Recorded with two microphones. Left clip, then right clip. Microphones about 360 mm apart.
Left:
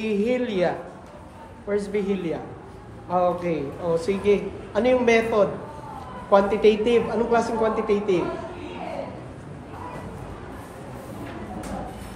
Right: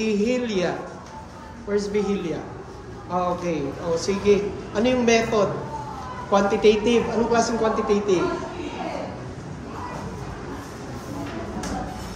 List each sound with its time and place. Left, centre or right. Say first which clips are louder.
0.0 s a man's voice: right 1 dB; left